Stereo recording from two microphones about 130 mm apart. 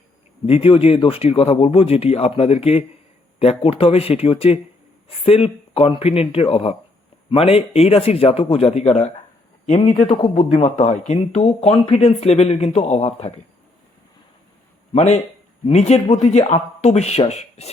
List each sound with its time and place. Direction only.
0.4 s speech: 45° left (ahead or behind)
14.9 s speech: 60° left (ahead or behind)